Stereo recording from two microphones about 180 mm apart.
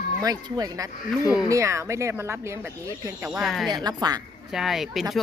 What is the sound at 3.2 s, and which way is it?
Speech, centre (ahead or behind).